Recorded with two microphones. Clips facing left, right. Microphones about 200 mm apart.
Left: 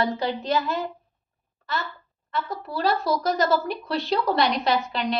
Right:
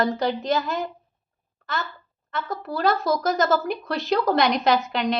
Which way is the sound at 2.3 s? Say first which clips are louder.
Right 1 dB; 45° right (ahead or behind).